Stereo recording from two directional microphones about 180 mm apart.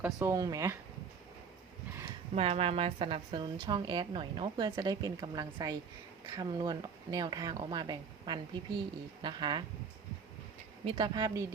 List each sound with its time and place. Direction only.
0.0 s speech: 15° right (ahead or behind)
2.3 s a woman's voice: 35° right (ahead or behind)
10.8 s a woman's voice: 25° right (ahead or behind)